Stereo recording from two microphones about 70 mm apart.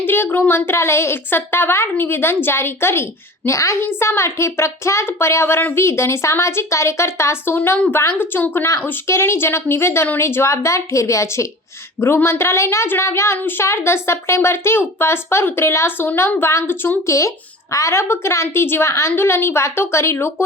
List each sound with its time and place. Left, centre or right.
0.0 s a woman's voice: left
17.1 s a woman's voice: left